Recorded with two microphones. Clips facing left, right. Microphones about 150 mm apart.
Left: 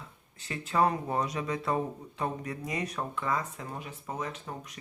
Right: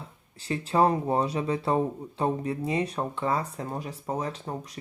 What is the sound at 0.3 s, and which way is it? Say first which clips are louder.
Speech: right 4 dB; 35° right (ahead or behind).